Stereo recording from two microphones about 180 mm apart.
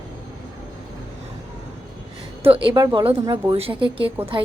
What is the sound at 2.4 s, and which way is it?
A woman's voice, 30° right (ahead or behind).